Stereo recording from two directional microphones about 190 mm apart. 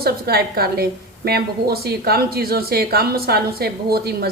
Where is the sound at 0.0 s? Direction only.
55° right (ahead or behind).